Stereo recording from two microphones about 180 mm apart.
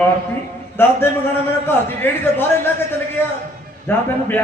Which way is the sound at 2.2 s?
10° left (ahead or behind).